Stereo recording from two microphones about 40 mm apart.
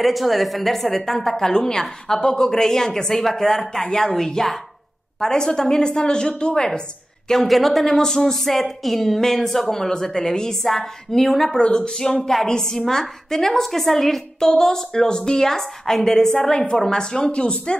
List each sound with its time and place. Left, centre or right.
0.0 s a woman's voice: centre
7.4 s a woman's voice: centre
11.5 s a woman's voice: left